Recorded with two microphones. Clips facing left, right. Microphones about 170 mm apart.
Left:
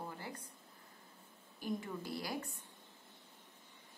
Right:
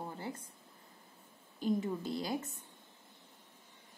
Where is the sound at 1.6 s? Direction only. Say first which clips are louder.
Right 7 dB; 20° right (ahead or behind).